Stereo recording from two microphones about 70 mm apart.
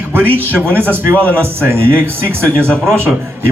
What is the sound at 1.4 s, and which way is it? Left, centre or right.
Speech, right.